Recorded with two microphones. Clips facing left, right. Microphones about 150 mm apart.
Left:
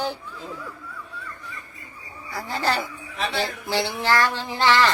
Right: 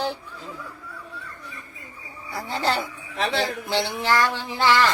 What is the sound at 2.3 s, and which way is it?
Speech, 20° right (ahead or behind).